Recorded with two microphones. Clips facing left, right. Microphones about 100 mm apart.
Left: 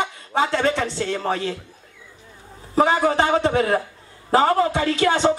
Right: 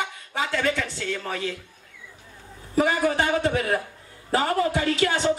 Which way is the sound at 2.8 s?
35° left (ahead or behind).